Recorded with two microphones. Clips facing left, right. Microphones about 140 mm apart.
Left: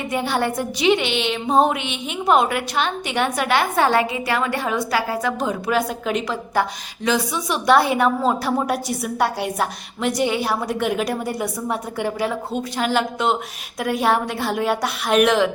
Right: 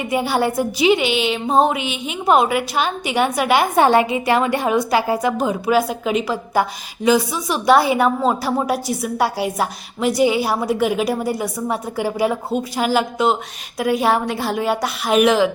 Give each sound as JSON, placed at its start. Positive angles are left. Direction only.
{"t": 0.1, "sound": "a woman's voice", "side_deg": -10}
{"t": 5.4, "sound": "a woman's voice", "side_deg": -5}